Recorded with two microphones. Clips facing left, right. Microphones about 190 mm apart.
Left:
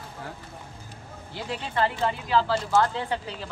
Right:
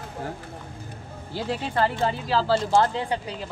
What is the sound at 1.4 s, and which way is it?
Speech, 40° right (ahead or behind).